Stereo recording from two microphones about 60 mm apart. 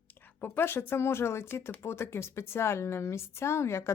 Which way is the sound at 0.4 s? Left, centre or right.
Left.